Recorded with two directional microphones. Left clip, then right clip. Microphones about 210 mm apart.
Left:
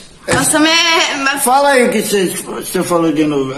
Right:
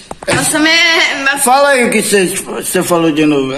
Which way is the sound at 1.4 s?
15° right (ahead or behind).